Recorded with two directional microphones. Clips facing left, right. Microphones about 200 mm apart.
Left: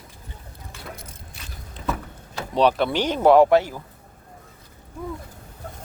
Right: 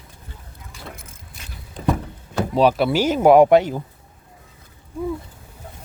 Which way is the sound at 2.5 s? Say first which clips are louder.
Right 2 dB; 5° right (ahead or behind).